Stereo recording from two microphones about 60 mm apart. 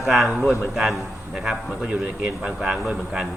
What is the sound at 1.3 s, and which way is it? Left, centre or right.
A man's voice, centre.